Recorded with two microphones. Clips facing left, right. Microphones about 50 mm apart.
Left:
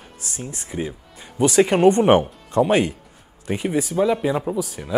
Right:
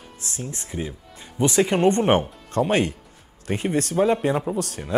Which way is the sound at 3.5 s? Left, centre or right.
Centre.